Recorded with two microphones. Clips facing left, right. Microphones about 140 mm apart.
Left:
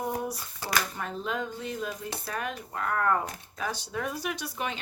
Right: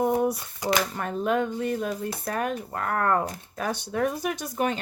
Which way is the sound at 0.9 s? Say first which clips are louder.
Right 7 dB; 55° right (ahead or behind).